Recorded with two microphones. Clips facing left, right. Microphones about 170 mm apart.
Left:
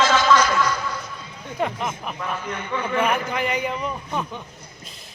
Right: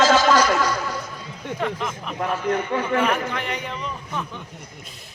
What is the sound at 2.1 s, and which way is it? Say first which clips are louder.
Speech: right 6 dB; 40° right (ahead or behind).